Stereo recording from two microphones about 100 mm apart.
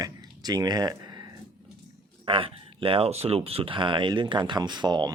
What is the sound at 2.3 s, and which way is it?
Speech, 60° right (ahead or behind).